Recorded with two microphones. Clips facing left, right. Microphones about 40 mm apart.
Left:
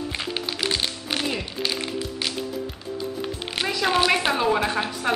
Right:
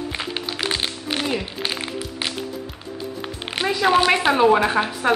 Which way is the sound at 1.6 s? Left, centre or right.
Right.